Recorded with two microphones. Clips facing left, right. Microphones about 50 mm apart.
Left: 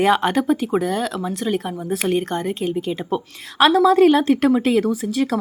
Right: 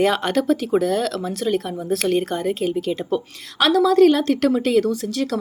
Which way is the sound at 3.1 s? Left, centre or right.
Left.